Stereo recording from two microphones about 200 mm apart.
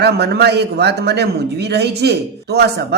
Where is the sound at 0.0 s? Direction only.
55° right (ahead or behind).